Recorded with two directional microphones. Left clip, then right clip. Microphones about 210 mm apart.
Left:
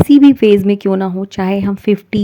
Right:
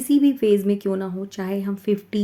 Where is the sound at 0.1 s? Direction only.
40° left (ahead or behind).